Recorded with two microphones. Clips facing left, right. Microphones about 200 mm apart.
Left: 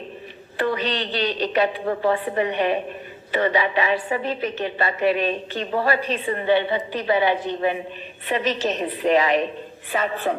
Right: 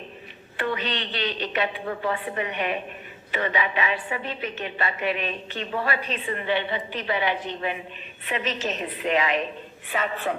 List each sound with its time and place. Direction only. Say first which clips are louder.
0.5 s a woman's voice: left 5 dB; 35° left (ahead or behind)